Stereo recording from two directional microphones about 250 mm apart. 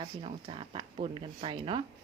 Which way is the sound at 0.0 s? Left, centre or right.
Right.